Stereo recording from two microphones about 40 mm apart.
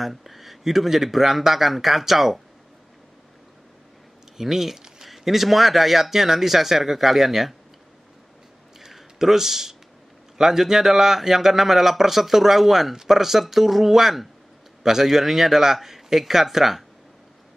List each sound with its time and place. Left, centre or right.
0.0 s a man's voice: centre
4.4 s a man's voice: centre
4.7 s a sound: centre
5.0 s a man's voice: centre
8.8 s a sound: centre
10.3 s a man's voice: centre